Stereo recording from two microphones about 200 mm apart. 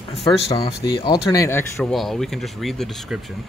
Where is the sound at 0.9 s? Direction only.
25° left (ahead or behind).